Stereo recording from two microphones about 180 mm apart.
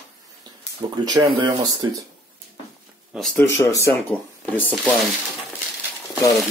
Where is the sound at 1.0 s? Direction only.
25° right (ahead or behind).